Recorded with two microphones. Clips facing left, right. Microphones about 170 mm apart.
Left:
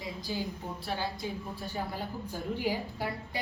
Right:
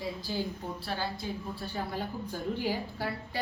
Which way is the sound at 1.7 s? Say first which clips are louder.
Right 1 dB; 10° left (ahead or behind).